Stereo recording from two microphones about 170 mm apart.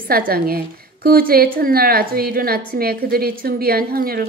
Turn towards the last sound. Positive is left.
turn(degrees=-60)  # may be behind; listen again after turning